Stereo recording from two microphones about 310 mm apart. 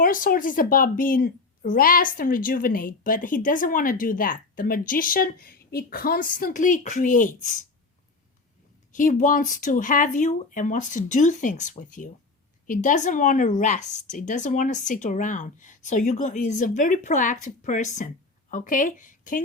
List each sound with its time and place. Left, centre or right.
0.0 s a woman's voice: left
8.9 s a woman's voice: left